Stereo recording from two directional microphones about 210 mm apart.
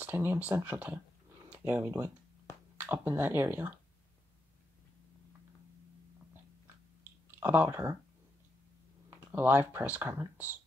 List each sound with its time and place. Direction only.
0.0 s speech: 10° right (ahead or behind)
7.2 s speech: 10° right (ahead or behind)
9.3 s speech: 10° right (ahead or behind)